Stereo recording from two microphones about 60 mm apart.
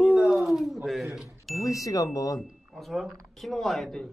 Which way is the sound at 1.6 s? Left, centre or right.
Left.